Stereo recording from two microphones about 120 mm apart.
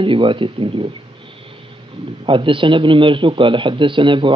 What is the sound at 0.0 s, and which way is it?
Speech, 45° right (ahead or behind).